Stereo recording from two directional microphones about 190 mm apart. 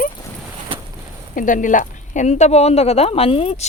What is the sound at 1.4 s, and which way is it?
Speech, 45° left (ahead or behind).